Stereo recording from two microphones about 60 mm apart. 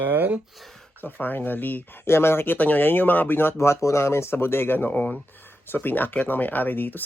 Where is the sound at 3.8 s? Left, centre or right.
Left.